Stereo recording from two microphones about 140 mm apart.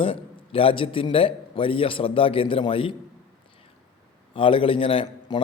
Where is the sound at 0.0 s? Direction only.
40° left (ahead or behind).